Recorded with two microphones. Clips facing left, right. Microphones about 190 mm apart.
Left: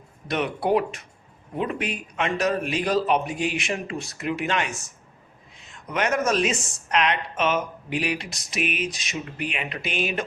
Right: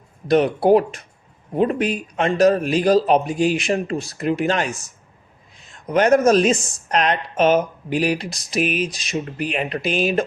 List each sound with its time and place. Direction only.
0.3 s speech: 35° right (ahead or behind)